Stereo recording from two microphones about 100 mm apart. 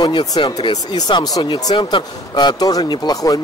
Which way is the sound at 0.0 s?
45° left (ahead or behind).